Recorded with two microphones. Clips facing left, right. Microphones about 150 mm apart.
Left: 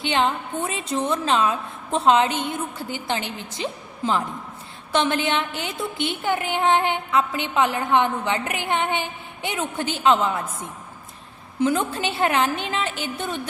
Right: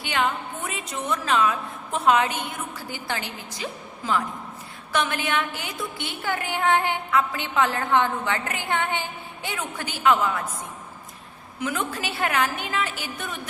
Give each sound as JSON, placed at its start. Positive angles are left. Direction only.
{"t": 0.0, "sound": "a woman's voice", "side_deg": 25}
{"t": 11.6, "sound": "a woman's voice", "side_deg": 30}